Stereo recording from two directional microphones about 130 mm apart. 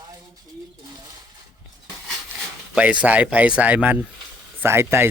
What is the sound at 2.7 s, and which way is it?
Speech, 10° right (ahead or behind).